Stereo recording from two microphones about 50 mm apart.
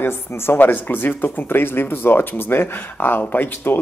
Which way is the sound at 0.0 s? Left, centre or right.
Left.